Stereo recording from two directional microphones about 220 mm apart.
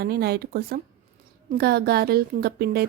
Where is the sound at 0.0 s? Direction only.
45° right (ahead or behind).